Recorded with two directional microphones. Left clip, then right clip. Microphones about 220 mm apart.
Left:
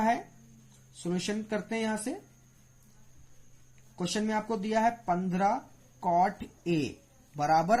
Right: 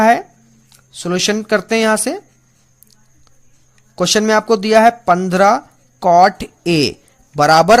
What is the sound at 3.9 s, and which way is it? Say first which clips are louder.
Speech: right 19 dB; 50° right (ahead or behind).